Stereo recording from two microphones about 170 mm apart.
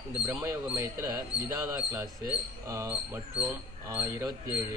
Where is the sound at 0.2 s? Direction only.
15° right (ahead or behind).